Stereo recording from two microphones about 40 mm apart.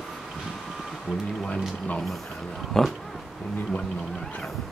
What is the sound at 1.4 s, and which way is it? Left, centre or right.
Speech, left.